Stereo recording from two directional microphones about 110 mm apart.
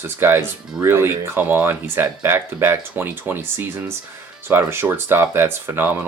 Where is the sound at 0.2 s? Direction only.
20° right (ahead or behind).